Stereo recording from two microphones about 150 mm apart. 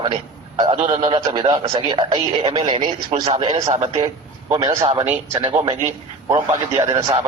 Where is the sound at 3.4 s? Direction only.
25° right (ahead or behind).